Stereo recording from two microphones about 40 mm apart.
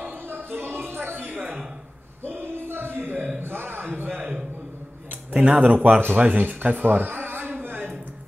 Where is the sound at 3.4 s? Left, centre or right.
Right.